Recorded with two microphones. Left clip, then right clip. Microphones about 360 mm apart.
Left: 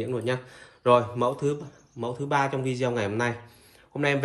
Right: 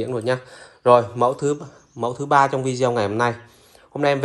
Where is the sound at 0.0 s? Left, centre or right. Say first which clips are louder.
Right 6 dB; centre.